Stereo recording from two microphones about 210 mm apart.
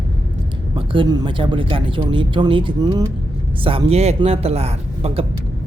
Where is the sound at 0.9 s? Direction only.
20° right (ahead or behind).